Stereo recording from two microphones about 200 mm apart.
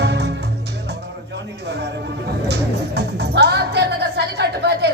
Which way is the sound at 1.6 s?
55° right (ahead or behind).